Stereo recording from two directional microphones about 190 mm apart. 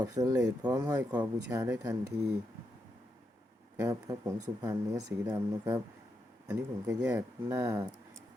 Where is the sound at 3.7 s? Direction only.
15° right (ahead or behind).